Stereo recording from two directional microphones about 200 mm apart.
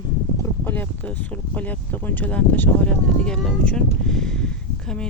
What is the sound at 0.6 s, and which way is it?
Speech, 10° left (ahead or behind).